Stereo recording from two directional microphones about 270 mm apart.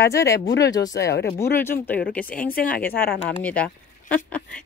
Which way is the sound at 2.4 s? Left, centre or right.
Left.